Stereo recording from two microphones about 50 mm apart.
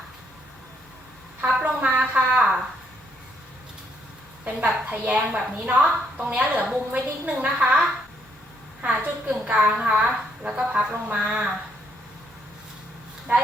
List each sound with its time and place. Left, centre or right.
1.6 s a woman's voice: right
4.4 s a woman's voice: right
6.6 s a woman's voice: centre
6.9 s a woman's voice: right
8.8 s a woman's voice: right
13.3 s speech: right